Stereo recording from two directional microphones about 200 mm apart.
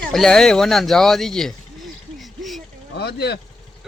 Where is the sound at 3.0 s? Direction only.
55° left (ahead or behind).